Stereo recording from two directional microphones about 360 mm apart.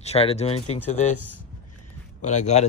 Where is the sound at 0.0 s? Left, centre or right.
Centre.